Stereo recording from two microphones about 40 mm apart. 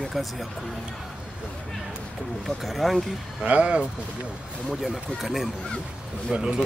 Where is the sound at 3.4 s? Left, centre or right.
Right.